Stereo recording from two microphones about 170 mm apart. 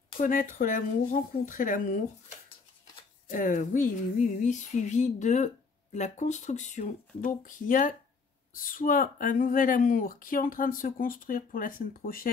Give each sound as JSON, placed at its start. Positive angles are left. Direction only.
{"t": 0.2, "sound": "speech", "side_deg": 50}
{"t": 3.3, "sound": "speech", "side_deg": 50}